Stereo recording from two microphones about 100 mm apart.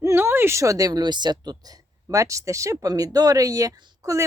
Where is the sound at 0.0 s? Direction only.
25° right (ahead or behind).